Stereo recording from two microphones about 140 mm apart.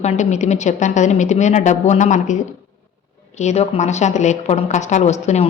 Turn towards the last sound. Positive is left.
turn(degrees=55)  # may be behind; listen again after turning